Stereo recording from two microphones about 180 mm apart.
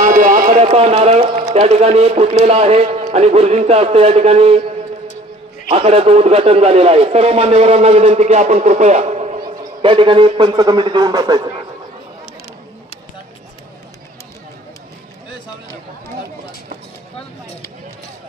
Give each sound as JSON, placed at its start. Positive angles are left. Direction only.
{"t": 0.0, "sound": "run", "side_deg": -45}
{"t": 1.5, "sound": "a man's voice", "side_deg": -35}
{"t": 5.7, "sound": "a man's voice", "side_deg": -35}
{"t": 9.4, "sound": "a man's voice", "side_deg": -25}